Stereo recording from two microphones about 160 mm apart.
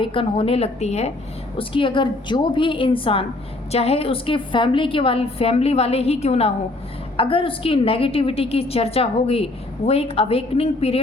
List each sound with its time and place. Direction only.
0.0 s a woman's voice: 35° left (ahead or behind)
1.5 s a woman's voice: 30° left (ahead or behind)